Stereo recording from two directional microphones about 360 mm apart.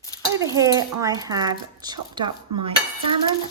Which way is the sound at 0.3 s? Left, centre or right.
Centre.